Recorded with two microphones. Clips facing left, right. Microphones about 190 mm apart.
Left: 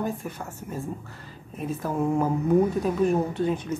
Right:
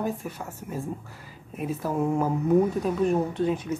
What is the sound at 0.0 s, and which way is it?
A woman's voice, 5° right (ahead or behind).